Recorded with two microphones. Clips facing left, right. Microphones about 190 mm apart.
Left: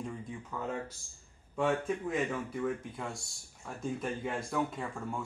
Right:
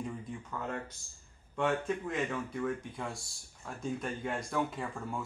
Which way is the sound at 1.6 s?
5° left (ahead or behind).